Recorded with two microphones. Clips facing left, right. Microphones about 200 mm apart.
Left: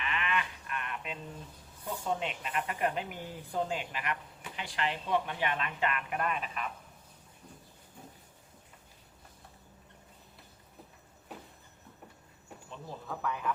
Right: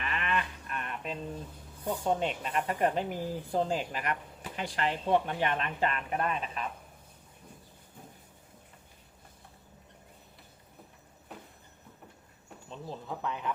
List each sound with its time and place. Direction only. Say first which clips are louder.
0.0 s sheep: right 1 dB; 40° right (ahead or behind)
2.0 s speech: right 4 dB; 35° right (ahead or behind)
12.7 s speech: right 2 dB; 25° right (ahead or behind)